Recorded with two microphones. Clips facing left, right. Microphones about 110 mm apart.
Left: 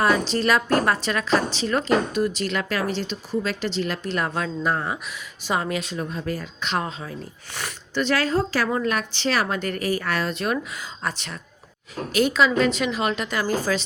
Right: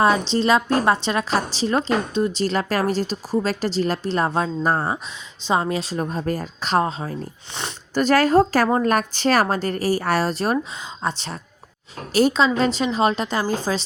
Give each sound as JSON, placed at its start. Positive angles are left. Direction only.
{"t": 0.0, "sound": "a woman's voice", "side_deg": -25}